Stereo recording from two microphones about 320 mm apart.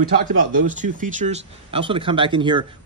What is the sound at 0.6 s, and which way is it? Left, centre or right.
Speech, right.